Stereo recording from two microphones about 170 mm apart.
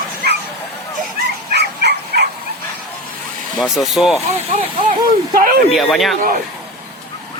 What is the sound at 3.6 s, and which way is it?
Speech, centre (ahead or behind).